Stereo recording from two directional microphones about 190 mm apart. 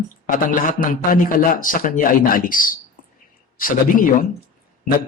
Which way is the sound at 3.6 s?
45° left (ahead or behind).